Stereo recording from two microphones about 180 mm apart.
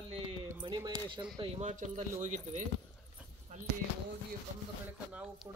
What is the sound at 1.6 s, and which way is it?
Speech, 45° right (ahead or behind).